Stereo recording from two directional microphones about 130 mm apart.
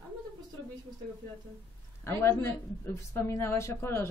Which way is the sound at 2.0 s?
20° left (ahead or behind).